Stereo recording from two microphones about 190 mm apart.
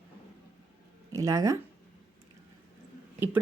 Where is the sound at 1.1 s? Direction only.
20° right (ahead or behind).